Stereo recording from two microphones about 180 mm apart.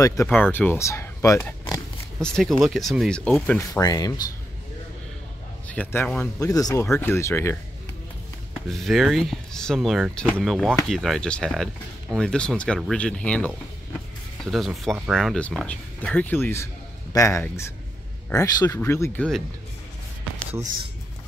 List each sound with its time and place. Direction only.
0.0 s speech: 15° left (ahead or behind)
2.2 s speech: 5° left (ahead or behind)
3.5 s speech: 15° left (ahead or behind)
5.7 s speech: 10° left (ahead or behind)
8.6 s speech: centre (ahead or behind)